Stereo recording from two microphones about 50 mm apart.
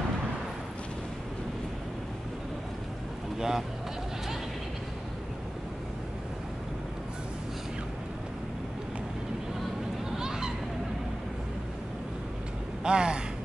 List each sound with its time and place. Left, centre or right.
3.3 s speech: centre
10.1 s a sound: centre
12.8 s speech: centre